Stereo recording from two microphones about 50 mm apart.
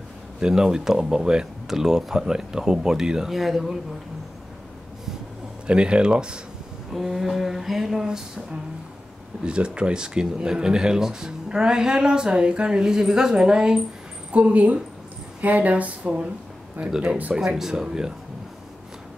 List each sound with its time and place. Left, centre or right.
0.4 s speech: centre
5.7 s speech: right
6.9 s a sound: centre
9.4 s speech: right
14.3 s speech: right